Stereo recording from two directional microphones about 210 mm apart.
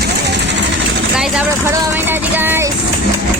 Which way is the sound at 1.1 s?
5° right (ahead or behind).